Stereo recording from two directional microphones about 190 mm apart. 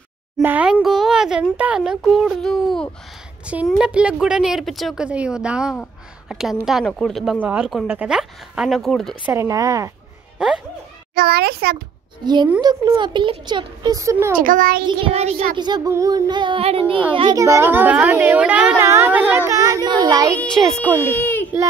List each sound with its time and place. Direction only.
0.4 s a woman's voice: 10° right (ahead or behind)
9.2 s a woman's voice: 15° right (ahead or behind)
11.1 s a child's voice: 55° right (ahead or behind)
12.5 s speech: 20° right (ahead or behind)
14.4 s a child's voice: 45° right (ahead or behind)
14.9 s a woman's voice: 30° right (ahead or behind)
21.0 s a child's voice: 10° left (ahead or behind)